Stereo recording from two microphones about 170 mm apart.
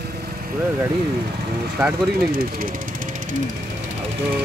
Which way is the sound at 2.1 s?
65° right (ahead or behind).